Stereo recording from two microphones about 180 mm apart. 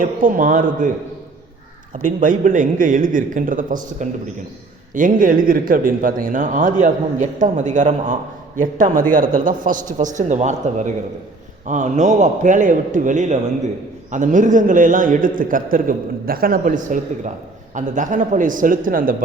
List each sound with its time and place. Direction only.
0.0 s speech: 50° right (ahead or behind)
2.0 s speech: 45° right (ahead or behind)